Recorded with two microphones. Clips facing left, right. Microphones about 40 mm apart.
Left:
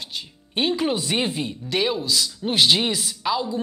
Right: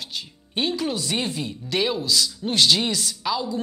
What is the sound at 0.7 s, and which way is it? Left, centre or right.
Speech, left.